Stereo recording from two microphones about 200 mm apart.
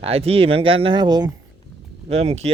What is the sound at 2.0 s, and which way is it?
Speech, 30° right (ahead or behind).